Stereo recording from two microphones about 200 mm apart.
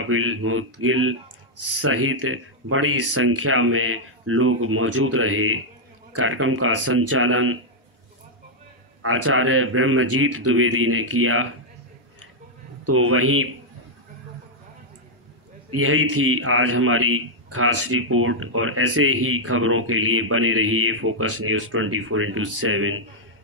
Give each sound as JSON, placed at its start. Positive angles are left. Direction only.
{"t": 0.0, "sound": "a man's voice", "side_deg": -90}
{"t": 9.0, "sound": "a man's voice", "side_deg": -90}
{"t": 12.9, "sound": "a man's voice", "side_deg": -90}
{"t": 15.7, "sound": "a man's voice", "side_deg": -90}